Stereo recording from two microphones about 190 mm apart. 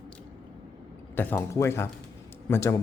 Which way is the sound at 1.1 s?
10° left (ahead or behind).